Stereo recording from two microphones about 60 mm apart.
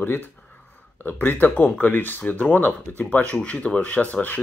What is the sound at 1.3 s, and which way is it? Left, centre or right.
Speech, left.